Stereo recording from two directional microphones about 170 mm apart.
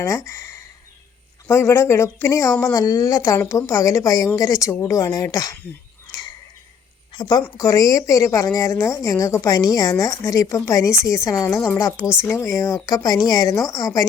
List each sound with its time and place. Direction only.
0.0 s a woman's voice: 15° left (ahead or behind)
6.1 s a sound: 25° left (ahead or behind)
7.1 s a woman's voice: 25° left (ahead or behind)